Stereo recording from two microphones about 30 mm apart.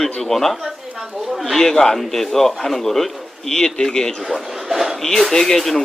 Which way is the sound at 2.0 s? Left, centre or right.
Centre.